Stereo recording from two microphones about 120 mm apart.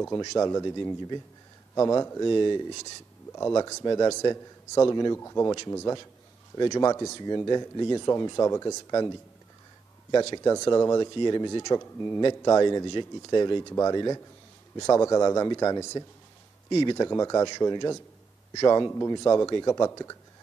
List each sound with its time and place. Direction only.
0.0 s speech: 30° left (ahead or behind)
3.3 s speech: 25° left (ahead or behind)
10.3 s speech: 30° left (ahead or behind)
16.9 s speech: 30° left (ahead or behind)